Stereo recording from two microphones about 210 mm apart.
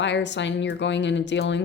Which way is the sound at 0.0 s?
55° left (ahead or behind).